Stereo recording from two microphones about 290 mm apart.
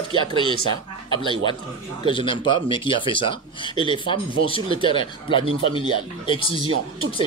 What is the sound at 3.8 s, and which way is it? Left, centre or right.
Speech, centre.